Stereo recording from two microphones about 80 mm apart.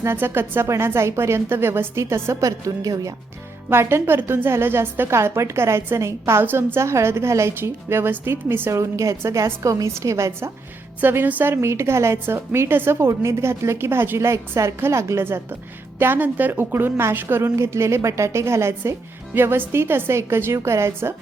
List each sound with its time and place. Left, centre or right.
0.0 s a woman's voice: right
2.4 s a woman's voice: right
3.7 s a woman's voice: right
8.8 s a woman's voice: right
11.0 s a woman's voice: right